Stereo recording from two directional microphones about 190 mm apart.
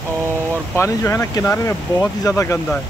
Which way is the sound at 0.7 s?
15° left (ahead or behind).